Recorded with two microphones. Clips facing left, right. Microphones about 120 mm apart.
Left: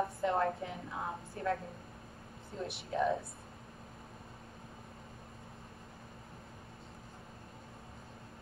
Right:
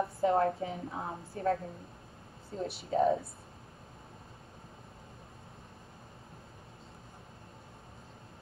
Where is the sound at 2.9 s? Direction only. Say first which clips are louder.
Right 5 dB; 30° right (ahead or behind).